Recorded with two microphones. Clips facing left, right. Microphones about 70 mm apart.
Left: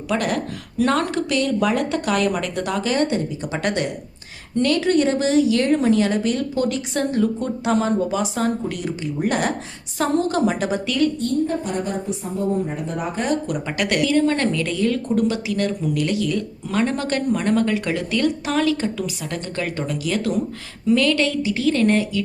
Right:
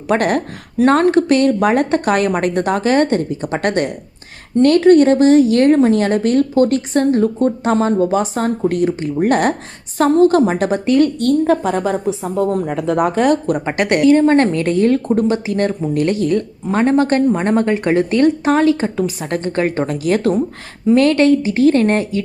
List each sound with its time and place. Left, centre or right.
0.1 s speech: right
11.2 s speech: right
13.5 s a woman's voice: right